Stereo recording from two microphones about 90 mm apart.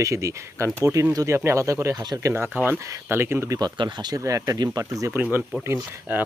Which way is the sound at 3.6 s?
60° right (ahead or behind).